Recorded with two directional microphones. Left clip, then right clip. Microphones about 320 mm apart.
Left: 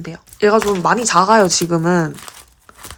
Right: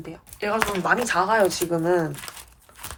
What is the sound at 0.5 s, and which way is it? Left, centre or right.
A woman's voice, centre.